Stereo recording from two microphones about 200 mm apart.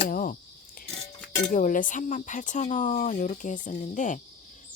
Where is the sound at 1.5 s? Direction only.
40° left (ahead or behind).